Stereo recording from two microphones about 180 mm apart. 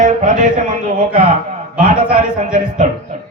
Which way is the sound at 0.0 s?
45° right (ahead or behind).